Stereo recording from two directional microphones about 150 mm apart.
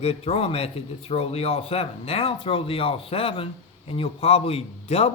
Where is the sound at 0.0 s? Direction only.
45° left (ahead or behind).